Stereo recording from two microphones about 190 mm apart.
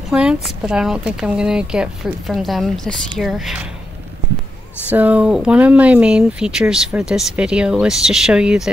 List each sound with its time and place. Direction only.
0.1 s speech: 5° right (ahead or behind)
4.8 s speech: 10° right (ahead or behind)